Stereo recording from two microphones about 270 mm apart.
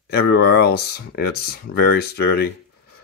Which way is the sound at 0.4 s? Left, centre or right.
Left.